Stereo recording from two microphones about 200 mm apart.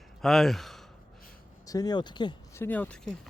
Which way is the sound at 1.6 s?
20° left (ahead or behind).